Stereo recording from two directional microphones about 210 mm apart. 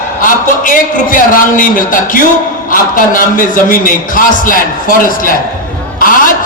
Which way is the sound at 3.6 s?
40° left (ahead or behind).